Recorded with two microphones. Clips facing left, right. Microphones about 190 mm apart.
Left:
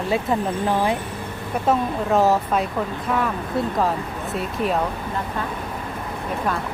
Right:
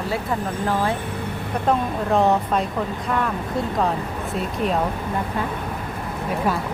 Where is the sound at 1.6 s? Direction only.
5° left (ahead or behind).